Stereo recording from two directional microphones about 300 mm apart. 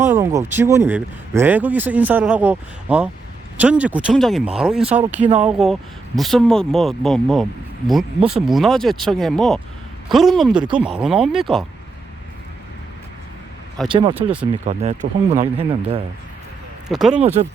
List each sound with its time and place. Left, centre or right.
0.0 s a sound: centre
0.5 s speech: centre
13.8 s speech: centre
16.9 s speech: centre
17.2 s speech: right